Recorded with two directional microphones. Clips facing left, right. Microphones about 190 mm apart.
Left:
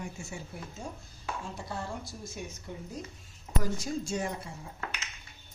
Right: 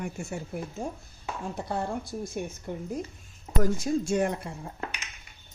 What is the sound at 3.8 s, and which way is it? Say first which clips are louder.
Speech: right 7 dB; 60° right (ahead or behind).